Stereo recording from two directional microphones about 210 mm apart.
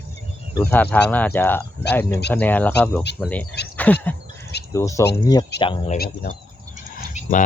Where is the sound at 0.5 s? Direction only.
10° left (ahead or behind).